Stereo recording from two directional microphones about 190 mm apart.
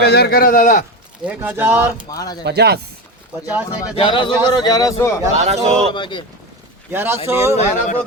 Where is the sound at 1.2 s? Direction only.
10° right (ahead or behind).